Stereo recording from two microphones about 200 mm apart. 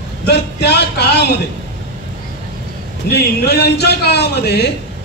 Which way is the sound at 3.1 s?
55° left (ahead or behind).